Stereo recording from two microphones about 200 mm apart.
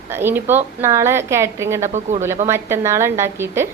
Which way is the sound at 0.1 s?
10° right (ahead or behind).